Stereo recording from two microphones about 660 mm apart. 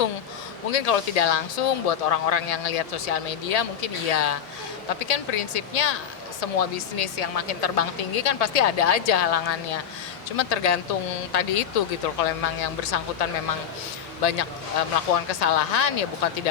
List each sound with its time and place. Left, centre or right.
0.7 s speech: left